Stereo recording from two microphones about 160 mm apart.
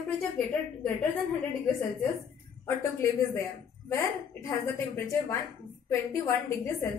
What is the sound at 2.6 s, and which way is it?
A woman's voice, 15° left (ahead or behind).